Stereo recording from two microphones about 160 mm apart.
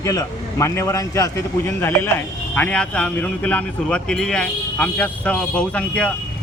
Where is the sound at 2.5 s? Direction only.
10° left (ahead or behind).